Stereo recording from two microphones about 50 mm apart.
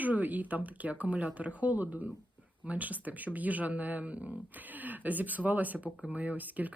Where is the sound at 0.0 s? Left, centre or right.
Right.